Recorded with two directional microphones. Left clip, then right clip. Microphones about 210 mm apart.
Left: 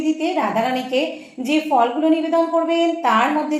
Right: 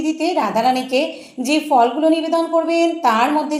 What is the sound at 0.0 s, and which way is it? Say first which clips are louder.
A woman's voice: right 1 dB; 30° right (ahead or behind).